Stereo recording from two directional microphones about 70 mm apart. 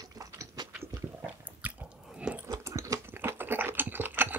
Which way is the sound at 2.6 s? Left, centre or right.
Right.